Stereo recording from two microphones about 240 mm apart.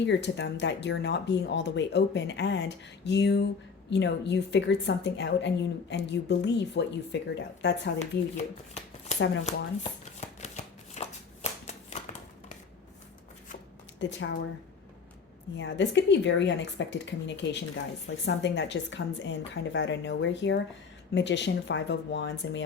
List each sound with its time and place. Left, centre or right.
0.0 s a woman's voice: left
8.4 s shuffling cards: left
9.1 s speech: left
10.2 s shuffling cards: left
14.0 s a woman's voice: left
15.5 s a woman's voice: left